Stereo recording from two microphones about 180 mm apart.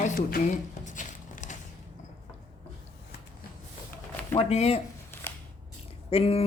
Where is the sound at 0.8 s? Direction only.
45° left (ahead or behind).